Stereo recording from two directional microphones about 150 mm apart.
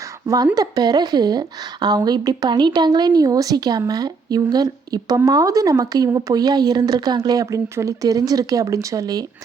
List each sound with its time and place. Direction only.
0.5 s a woman's voice: 25° right (ahead or behind)